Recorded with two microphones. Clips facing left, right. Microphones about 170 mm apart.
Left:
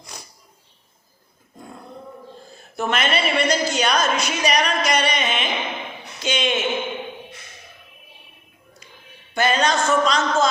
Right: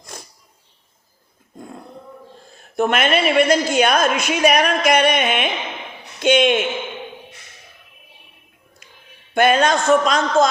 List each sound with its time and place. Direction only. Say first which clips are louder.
2.7 s a woman's voice: right 5 dB; 50° right (ahead or behind)
9.3 s a woman's voice: right 5 dB; 55° right (ahead or behind)